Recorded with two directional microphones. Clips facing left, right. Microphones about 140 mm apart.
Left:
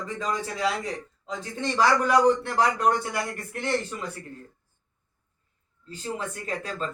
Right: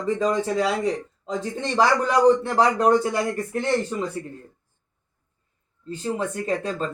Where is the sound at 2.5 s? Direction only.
30° right (ahead or behind).